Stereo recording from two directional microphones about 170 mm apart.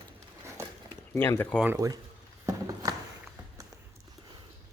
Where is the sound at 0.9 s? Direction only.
15° left (ahead or behind).